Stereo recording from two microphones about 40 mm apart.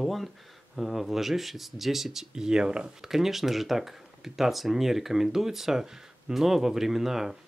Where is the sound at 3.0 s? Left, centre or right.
Centre.